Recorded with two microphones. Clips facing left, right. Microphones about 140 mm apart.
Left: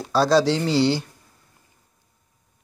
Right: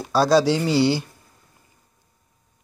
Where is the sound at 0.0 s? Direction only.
5° right (ahead or behind).